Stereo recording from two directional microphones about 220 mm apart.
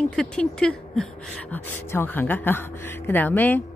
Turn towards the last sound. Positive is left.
turn(degrees=10)  # may be behind; listen again after turning